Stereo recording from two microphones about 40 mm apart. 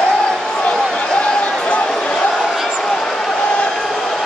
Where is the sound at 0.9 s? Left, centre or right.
Left.